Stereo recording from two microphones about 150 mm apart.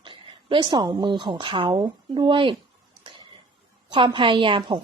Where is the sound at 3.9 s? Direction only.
35° right (ahead or behind).